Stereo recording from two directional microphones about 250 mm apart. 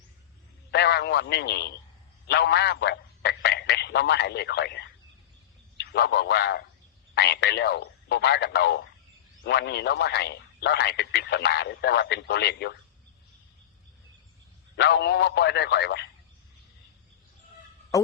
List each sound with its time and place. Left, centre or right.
0.7 s a man's voice: left
14.8 s speech: left